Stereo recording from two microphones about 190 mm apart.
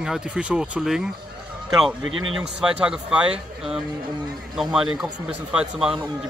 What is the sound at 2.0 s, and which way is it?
Speech, 90° right.